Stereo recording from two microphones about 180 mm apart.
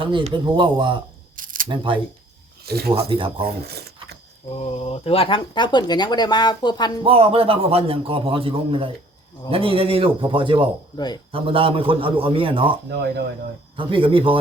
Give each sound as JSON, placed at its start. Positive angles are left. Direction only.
{"t": 0.0, "sound": "a man's voice", "side_deg": -25}
{"t": 1.4, "sound": "camera", "side_deg": -50}
{"t": 1.6, "sound": "a man's voice", "side_deg": -25}
{"t": 2.6, "sound": "speech", "side_deg": -60}
{"t": 2.9, "sound": "a man's voice", "side_deg": -30}
{"t": 3.4, "sound": "a sound", "side_deg": -60}
{"t": 4.5, "sound": "speech", "side_deg": 30}
{"t": 7.0, "sound": "a man's voice", "side_deg": -30}
{"t": 10.9, "sound": "speech", "side_deg": 25}
{"t": 11.3, "sound": "a man's voice", "side_deg": -30}
{"t": 12.9, "sound": "speech", "side_deg": -65}
{"t": 13.7, "sound": "a man's voice", "side_deg": -30}